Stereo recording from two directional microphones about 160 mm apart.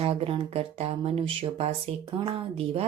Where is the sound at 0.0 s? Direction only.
35° right (ahead or behind).